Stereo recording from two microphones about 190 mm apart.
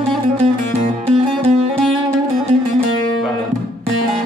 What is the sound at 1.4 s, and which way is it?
Music, 30° right (ahead or behind).